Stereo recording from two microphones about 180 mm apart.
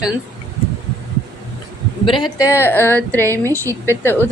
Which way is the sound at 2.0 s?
25° left (ahead or behind).